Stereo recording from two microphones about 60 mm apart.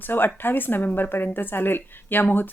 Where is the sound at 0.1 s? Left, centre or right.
Left.